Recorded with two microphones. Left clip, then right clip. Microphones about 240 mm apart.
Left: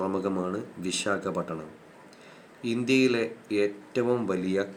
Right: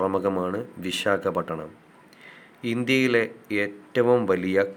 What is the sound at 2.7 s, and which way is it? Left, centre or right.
A man's voice, right.